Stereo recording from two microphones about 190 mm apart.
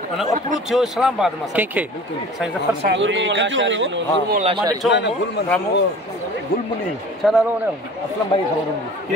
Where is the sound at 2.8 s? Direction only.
70° right (ahead or behind).